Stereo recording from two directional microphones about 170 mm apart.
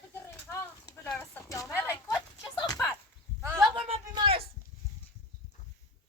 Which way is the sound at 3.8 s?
35° right (ahead or behind).